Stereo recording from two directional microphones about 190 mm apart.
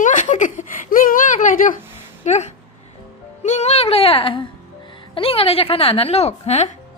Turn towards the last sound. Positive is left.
turn(degrees=35)  # may be behind; listen again after turning